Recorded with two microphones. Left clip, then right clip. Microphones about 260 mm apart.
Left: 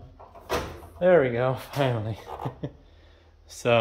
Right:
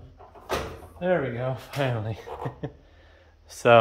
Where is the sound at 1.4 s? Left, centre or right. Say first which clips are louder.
Left 3 dB; centre.